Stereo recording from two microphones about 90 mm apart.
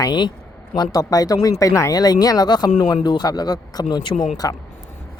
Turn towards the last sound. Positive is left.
turn(degrees=40)  # may be behind; listen again after turning